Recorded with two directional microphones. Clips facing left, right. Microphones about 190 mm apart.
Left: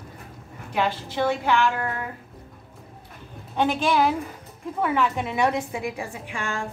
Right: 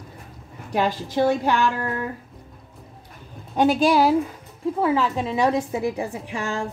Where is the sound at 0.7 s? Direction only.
40° right (ahead or behind).